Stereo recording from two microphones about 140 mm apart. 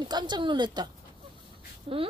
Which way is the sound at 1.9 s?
40° right (ahead or behind).